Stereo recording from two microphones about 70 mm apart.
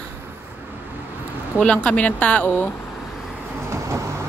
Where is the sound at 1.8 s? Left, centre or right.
Centre.